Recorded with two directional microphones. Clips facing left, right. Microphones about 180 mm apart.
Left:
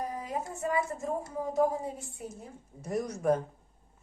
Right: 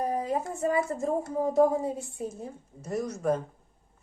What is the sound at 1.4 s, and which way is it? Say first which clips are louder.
Speech: right 5 dB; 45° right (ahead or behind).